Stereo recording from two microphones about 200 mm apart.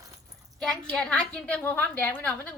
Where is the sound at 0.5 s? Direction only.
Centre (ahead or behind).